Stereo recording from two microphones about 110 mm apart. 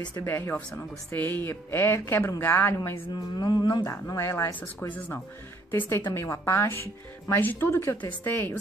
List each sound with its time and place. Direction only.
0.1 s speech: 25° left (ahead or behind)
3.3 s speech: 40° left (ahead or behind)
3.8 s speech: 25° left (ahead or behind)